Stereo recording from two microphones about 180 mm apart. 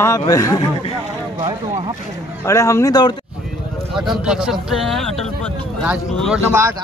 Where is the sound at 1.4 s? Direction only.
30° right (ahead or behind).